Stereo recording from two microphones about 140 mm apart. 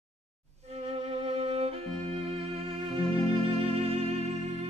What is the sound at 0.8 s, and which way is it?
Music, 45° right (ahead or behind).